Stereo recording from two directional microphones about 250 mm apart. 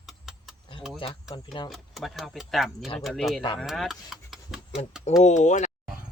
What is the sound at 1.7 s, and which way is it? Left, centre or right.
Speech, centre.